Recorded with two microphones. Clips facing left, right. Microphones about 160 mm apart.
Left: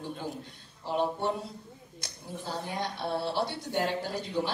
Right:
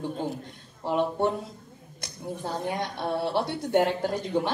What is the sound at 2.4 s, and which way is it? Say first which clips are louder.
A woman's voice: right 4 dB; 55° right (ahead or behind).